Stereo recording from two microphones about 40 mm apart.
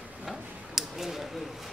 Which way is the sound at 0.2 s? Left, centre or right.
Centre.